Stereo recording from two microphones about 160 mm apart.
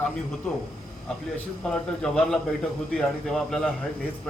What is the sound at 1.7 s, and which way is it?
A man's voice, 5° left (ahead or behind).